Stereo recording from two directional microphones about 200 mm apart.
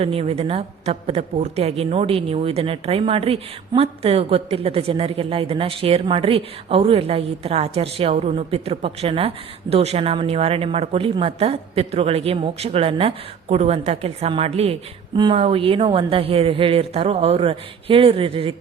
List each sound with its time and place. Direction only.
0.0 s a woman's voice: 30° right (ahead or behind)